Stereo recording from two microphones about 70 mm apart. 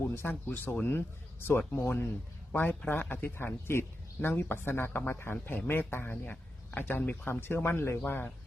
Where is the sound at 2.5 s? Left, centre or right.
Centre.